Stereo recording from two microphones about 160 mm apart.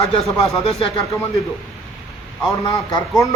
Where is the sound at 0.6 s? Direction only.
40° left (ahead or behind).